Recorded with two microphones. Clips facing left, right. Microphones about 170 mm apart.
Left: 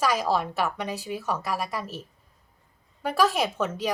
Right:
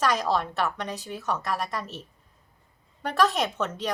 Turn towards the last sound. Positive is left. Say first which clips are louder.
# left 2 dB
turn(degrees=10)  # may be behind; listen again after turning